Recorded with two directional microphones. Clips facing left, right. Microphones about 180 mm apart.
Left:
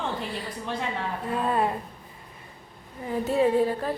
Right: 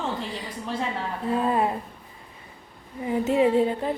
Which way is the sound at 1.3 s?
20° right (ahead or behind).